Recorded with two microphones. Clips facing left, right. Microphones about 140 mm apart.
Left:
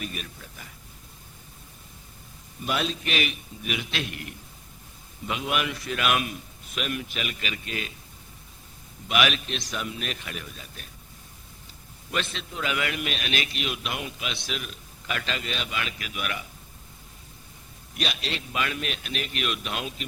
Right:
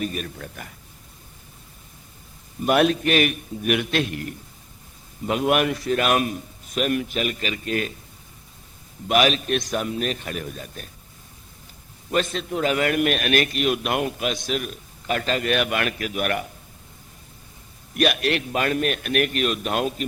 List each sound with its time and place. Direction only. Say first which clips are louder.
0.0 s a man's voice: right 8 dB; 40° right (ahead or behind)
0.3 s a man's voice: right 8 dB; 60° right (ahead or behind)
2.6 s a man's voice: right 10 dB; 60° right (ahead or behind)
9.0 s a man's voice: right 6 dB; 40° right (ahead or behind)
12.1 s a man's voice: right 8 dB; 45° right (ahead or behind)
17.9 s a man's voice: right 11 dB; 55° right (ahead or behind)
18.5 s a man's voice: right 8 dB; 45° right (ahead or behind)
19.3 s a man's voice: right 7 dB; 45° right (ahead or behind)